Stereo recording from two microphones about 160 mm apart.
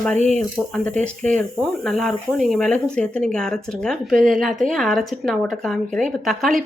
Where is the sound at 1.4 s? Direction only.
5° left (ahead or behind).